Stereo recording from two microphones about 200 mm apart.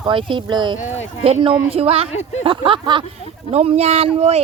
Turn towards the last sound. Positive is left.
turn(degrees=-30)  # may be behind; listen again after turning